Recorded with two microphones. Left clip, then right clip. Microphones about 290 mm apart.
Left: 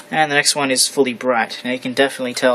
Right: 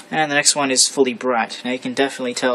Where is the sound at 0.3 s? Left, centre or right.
Centre.